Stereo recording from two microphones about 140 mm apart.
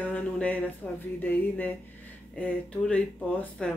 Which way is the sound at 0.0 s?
10° left (ahead or behind).